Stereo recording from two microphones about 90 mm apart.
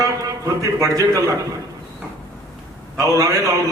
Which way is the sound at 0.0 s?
40° right (ahead or behind).